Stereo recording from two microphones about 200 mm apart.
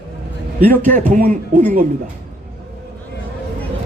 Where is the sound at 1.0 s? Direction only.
40° right (ahead or behind).